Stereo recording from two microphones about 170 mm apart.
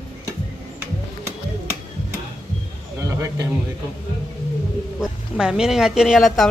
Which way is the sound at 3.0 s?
20° right (ahead or behind).